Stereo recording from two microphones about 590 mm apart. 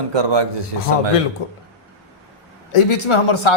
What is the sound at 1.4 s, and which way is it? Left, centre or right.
Speech, left.